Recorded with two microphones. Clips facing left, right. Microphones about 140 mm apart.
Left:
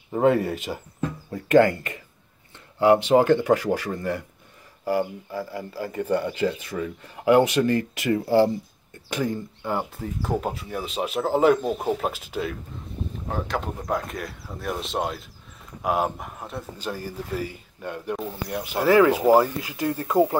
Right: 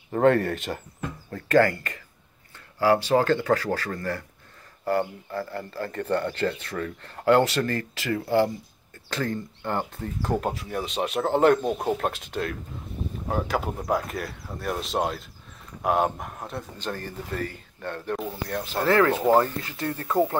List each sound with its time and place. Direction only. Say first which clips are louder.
0.1 s speech: even; 5° left (ahead or behind)
1.3 s speech: left 3 dB; 20° left (ahead or behind)